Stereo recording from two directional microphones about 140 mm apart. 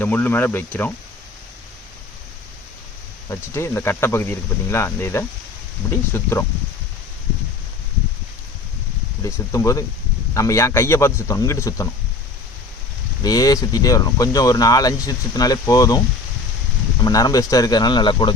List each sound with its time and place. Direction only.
0.0 s speech: 15° left (ahead or behind)
3.2 s speech: 20° left (ahead or behind)
9.2 s speech: 25° left (ahead or behind)
13.2 s speech: 25° left (ahead or behind)
17.0 s speech: 25° left (ahead or behind)